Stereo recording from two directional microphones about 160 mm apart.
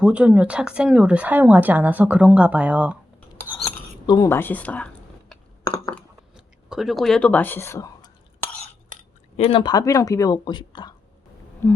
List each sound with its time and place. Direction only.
0.0 s speech: 5° right (ahead or behind)
3.5 s cutlery: 10° left (ahead or behind)
4.0 s speech: 20° left (ahead or behind)
6.3 s speech: centre (ahead or behind); by 8.1 s 15° left (ahead or behind)
9.4 s speech: 30° left (ahead or behind)
11.6 s speech: 15° left (ahead or behind)